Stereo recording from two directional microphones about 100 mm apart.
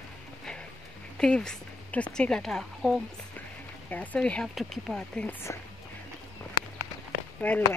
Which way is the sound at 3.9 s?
15° left (ahead or behind).